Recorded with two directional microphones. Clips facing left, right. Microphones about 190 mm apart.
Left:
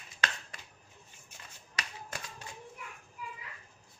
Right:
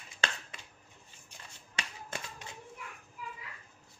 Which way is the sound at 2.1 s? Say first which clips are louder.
Right 2 dB; 25° right (ahead or behind).